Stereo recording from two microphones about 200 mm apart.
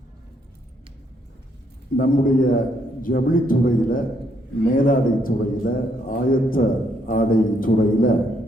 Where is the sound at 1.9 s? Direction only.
45° left (ahead or behind).